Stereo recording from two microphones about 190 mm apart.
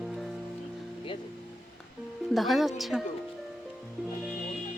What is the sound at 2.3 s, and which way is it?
Speech, centre (ahead or behind).